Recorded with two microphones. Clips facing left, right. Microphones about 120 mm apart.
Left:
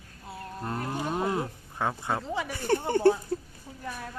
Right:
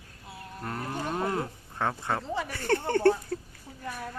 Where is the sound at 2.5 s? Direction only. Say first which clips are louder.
Left 1 dB; 15° left (ahead or behind).